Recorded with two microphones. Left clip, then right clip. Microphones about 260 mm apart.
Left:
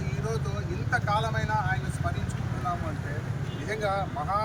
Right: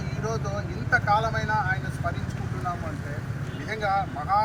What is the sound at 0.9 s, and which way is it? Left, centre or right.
Speech, centre.